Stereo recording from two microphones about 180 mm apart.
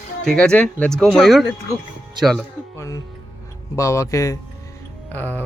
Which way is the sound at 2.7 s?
15° left (ahead or behind).